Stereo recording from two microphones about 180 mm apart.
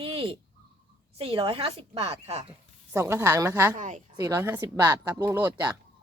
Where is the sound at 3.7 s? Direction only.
40° right (ahead or behind).